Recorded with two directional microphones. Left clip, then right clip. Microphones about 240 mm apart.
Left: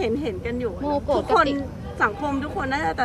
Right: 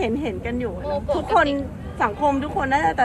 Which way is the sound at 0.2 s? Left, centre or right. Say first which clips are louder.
Right 1 dB; centre.